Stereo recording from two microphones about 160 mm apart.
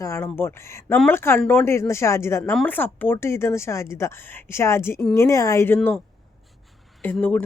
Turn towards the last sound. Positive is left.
turn(degrees=10)  # may be behind; listen again after turning